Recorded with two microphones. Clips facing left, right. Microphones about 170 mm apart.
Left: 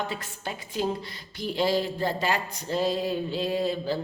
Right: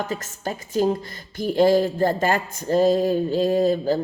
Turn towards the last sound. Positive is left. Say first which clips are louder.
# right 8 dB
turn(degrees=-45)  # may be behind; listen again after turning